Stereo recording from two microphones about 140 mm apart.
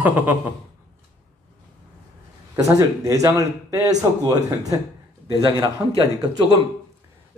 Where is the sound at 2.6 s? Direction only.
25° right (ahead or behind).